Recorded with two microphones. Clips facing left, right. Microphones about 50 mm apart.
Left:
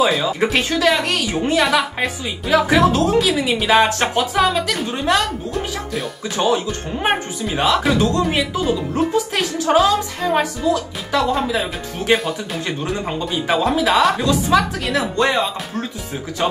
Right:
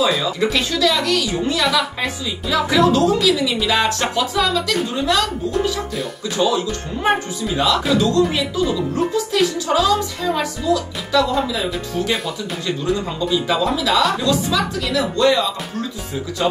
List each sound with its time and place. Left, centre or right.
0.2 s speech: left
6.3 s speech: left
13.7 s speech: left